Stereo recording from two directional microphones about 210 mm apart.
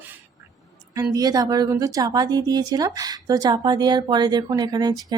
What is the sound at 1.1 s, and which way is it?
Speech, 15° right (ahead or behind).